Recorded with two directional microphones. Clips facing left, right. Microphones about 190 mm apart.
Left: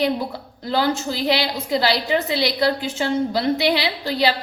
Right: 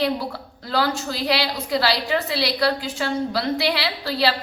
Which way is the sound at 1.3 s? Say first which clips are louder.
Left 1 dB; 20° left (ahead or behind).